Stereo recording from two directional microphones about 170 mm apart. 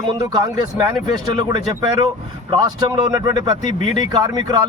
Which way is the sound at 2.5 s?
25° right (ahead or behind).